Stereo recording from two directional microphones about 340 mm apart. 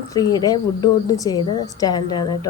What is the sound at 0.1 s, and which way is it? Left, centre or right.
Speech, centre.